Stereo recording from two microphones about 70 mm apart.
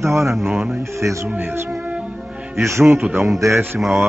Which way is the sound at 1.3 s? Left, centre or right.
Right.